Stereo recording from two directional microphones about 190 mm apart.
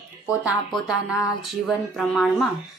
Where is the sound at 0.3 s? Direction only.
5° right (ahead or behind).